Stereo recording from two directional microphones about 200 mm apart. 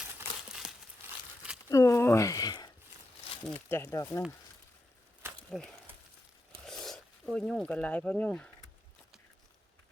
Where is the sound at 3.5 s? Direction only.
10° left (ahead or behind).